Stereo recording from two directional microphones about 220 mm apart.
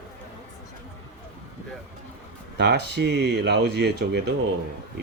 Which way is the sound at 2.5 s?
50° right (ahead or behind).